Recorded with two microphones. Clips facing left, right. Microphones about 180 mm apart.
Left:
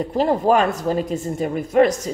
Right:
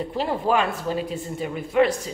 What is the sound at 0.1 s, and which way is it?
A woman's voice, 45° left (ahead or behind).